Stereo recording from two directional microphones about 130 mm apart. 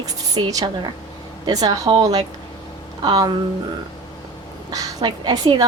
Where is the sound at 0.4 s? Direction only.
40° right (ahead or behind).